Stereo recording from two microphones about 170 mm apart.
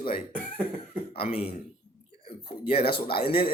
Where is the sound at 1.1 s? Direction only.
35° left (ahead or behind).